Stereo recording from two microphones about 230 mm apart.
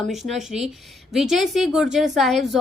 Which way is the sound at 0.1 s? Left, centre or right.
Centre.